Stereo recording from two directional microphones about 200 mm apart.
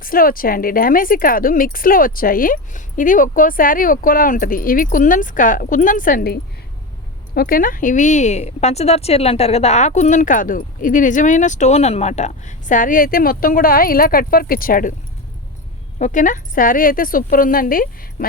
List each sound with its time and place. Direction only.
0.0 s speech: 45° left (ahead or behind)
16.0 s speech: 40° left (ahead or behind)